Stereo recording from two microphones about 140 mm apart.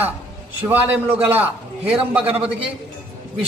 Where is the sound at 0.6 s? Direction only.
15° right (ahead or behind).